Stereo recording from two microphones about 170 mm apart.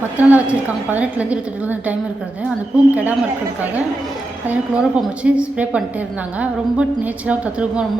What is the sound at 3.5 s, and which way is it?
A woman's voice, 10° right (ahead or behind).